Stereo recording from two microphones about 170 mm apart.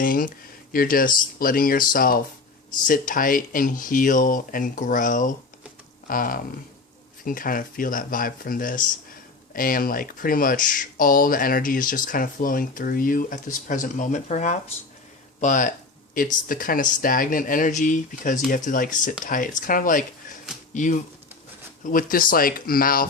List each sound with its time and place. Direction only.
0.0 s speech: 55° left (ahead or behind)